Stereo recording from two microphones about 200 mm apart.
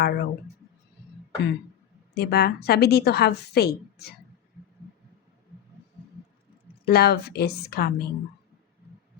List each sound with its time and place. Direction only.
0.0 s a woman's voice: 50° left (ahead or behind)
2.1 s a woman's voice: 50° left (ahead or behind)
6.8 s a woman's voice: 50° left (ahead or behind)